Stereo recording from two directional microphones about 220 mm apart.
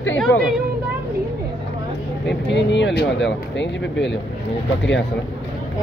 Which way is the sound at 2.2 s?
55° left (ahead or behind).